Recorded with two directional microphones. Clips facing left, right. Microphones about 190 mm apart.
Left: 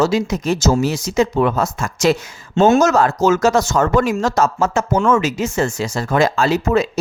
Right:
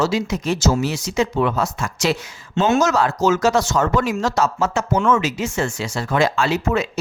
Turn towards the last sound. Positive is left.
turn(degrees=35)  # may be behind; listen again after turning